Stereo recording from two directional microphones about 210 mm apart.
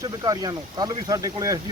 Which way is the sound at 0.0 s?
15° right (ahead or behind).